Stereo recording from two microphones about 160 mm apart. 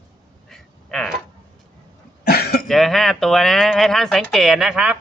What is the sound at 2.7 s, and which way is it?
Speech, centre (ahead or behind).